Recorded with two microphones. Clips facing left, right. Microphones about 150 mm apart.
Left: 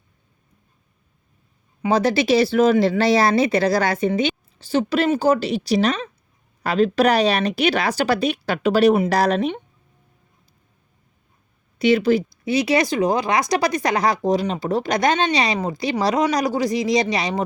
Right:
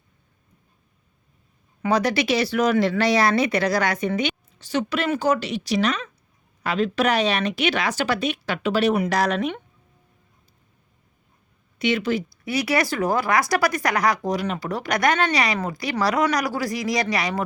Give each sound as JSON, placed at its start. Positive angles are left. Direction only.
{"t": 1.8, "sound": "speech", "side_deg": 25}
{"t": 11.8, "sound": "a woman's voice", "side_deg": 35}
{"t": 12.5, "sound": "speech", "side_deg": 20}